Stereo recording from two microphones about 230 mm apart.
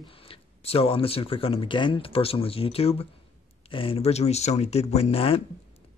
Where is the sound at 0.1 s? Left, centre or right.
Left.